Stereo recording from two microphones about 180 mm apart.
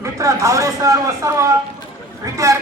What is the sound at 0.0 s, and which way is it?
A man's voice, 15° right (ahead or behind).